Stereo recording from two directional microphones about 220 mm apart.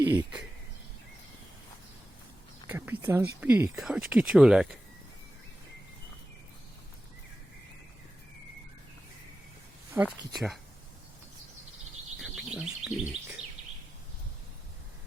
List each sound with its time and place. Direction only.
0.0 s speech: 15° right (ahead or behind)
2.6 s speech: 10° right (ahead or behind)
10.1 s speech: centre (ahead or behind)
12.2 s bird: 5° right (ahead or behind)